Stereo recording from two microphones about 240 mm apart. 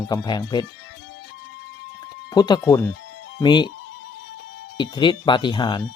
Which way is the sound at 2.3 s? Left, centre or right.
Centre.